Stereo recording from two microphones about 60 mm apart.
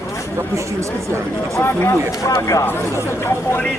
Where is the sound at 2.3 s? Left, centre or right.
Left.